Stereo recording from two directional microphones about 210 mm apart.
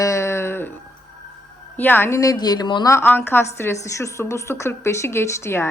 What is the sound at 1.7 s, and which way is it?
A woman's voice, 10° left (ahead or behind).